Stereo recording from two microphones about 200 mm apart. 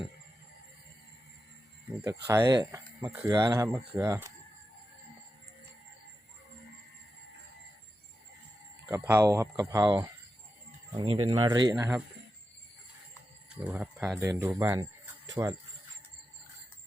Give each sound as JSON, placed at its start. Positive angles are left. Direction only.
{"t": 2.0, "sound": "speech", "side_deg": -15}
{"t": 8.9, "sound": "speech", "side_deg": -15}
{"t": 13.6, "sound": "speech", "side_deg": -10}